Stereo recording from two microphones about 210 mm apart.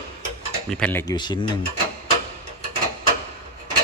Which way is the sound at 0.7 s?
5° left (ahead or behind).